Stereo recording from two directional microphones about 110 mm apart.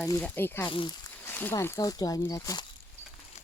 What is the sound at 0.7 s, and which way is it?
Speech, 45° left (ahead or behind).